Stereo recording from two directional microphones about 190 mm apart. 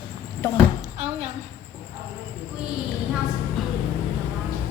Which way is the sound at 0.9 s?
35° right (ahead or behind).